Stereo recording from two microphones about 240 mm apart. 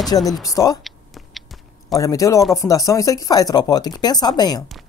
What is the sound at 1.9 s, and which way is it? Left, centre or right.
Speech, centre.